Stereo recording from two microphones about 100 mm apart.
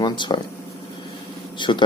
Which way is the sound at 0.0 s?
50° left (ahead or behind).